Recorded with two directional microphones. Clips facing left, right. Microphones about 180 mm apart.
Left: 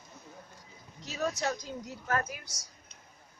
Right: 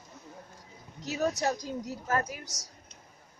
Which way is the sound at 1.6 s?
40° right (ahead or behind).